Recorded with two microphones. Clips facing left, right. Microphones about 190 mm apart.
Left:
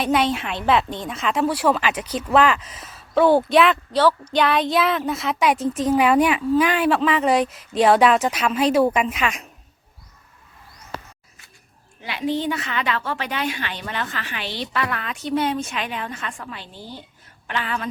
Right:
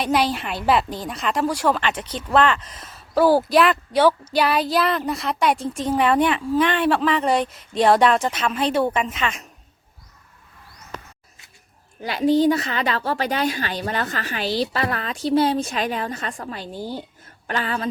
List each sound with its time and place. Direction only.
0.0 s a woman's voice: centre (ahead or behind)
3.2 s a woman's voice: 5° right (ahead or behind)
11.9 s a woman's voice: 40° right (ahead or behind)